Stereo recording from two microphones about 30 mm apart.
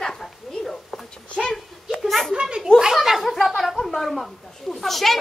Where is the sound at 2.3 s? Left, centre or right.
Right.